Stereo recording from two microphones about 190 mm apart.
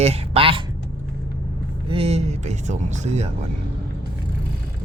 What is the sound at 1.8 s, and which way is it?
Speech, 30° right (ahead or behind).